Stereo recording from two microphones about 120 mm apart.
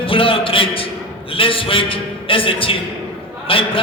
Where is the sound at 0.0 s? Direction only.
50° left (ahead or behind).